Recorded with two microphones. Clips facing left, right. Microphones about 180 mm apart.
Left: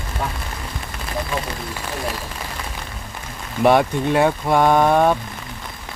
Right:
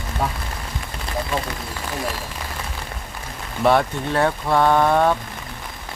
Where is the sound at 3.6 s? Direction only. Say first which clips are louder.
Left 3 dB; 15° left (ahead or behind).